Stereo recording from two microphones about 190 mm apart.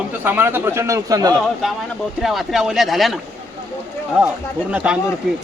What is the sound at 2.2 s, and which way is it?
Speech, centre (ahead or behind).